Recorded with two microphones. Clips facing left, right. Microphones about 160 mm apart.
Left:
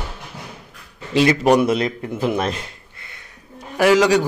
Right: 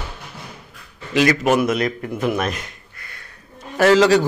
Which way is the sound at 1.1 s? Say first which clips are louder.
Left 2 dB; 30° left (ahead or behind).